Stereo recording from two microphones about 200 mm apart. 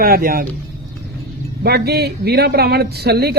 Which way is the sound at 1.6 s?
50° right (ahead or behind).